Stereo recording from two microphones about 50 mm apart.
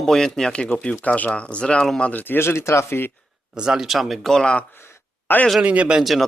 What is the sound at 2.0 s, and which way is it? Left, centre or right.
Speech, left.